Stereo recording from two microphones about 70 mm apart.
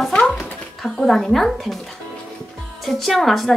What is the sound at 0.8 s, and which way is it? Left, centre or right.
Speech, centre.